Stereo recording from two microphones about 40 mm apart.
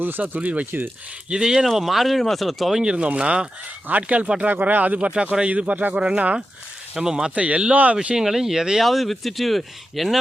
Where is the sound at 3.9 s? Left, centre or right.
Right.